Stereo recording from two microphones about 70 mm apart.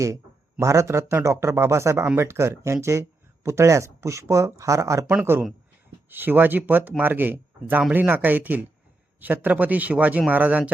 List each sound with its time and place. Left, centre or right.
0.6 s speech: right
6.1 s speech: right